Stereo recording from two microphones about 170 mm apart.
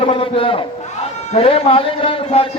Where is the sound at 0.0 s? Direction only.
35° left (ahead or behind).